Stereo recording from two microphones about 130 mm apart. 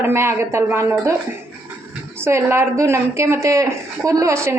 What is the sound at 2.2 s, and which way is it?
Speech, 20° right (ahead or behind).